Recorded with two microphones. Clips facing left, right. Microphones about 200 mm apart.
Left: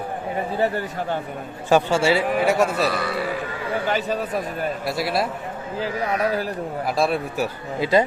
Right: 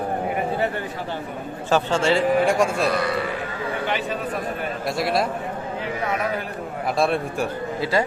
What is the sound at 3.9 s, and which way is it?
Speech, 40° left (ahead or behind).